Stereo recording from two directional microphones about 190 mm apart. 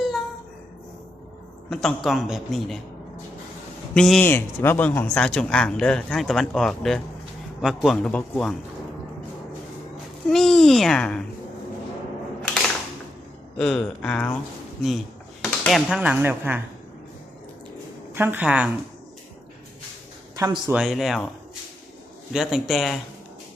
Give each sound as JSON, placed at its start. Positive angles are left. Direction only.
{"t": 1.7, "sound": "speech", "side_deg": 0}
{"t": 3.9, "sound": "speech", "side_deg": 0}
{"t": 10.2, "sound": "speech", "side_deg": 0}
{"t": 13.6, "sound": "speech", "side_deg": 5}
{"t": 18.1, "sound": "a woman's voice", "side_deg": -10}
{"t": 20.3, "sound": "speech", "side_deg": -20}
{"t": 20.7, "sound": "speech", "side_deg": 0}
{"t": 22.3, "sound": "speech", "side_deg": 0}